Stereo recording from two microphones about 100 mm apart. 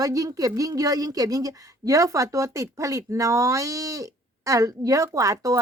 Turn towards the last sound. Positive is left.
turn(degrees=-35)  # may be behind; listen again after turning